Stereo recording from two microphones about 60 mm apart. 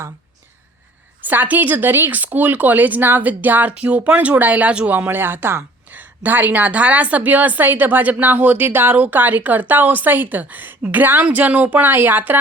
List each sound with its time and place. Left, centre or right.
1.2 s speech: right
4.9 s a woman's voice: right